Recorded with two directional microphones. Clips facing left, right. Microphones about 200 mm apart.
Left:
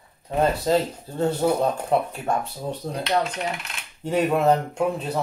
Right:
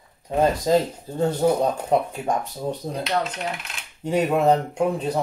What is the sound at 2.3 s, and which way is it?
Speech, 15° right (ahead or behind).